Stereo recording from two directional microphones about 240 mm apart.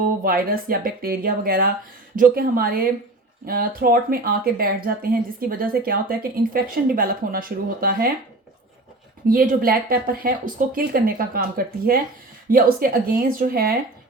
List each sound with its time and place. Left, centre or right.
0.2 s speech: right
9.2 s speech: right